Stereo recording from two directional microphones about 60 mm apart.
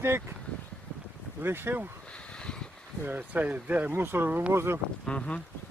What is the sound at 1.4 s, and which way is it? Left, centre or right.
Speech, right.